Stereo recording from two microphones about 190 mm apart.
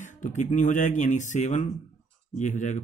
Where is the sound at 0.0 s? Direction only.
40° left (ahead or behind).